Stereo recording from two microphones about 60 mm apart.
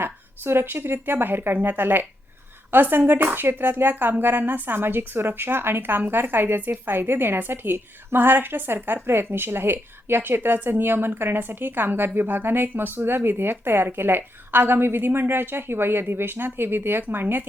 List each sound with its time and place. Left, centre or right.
0.0 s a woman's voice: right